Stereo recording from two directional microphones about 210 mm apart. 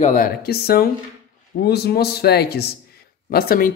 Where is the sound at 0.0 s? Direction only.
40° left (ahead or behind).